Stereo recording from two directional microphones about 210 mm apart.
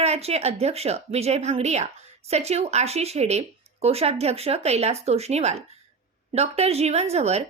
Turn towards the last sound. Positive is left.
turn(degrees=-30)  # may be behind; listen again after turning